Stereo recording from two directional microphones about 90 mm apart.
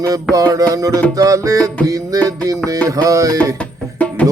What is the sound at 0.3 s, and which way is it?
Music, 40° right (ahead or behind).